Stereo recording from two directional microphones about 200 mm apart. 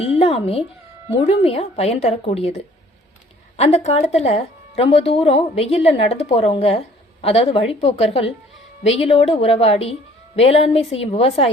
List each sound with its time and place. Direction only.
0.0 s music: 30° left (ahead or behind)
1.2 s a woman's voice: 30° left (ahead or behind)